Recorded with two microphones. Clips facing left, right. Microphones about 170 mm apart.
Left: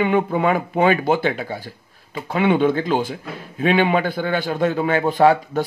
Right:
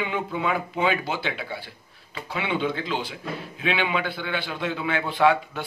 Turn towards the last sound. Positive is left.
turn(degrees=40)  # may be behind; listen again after turning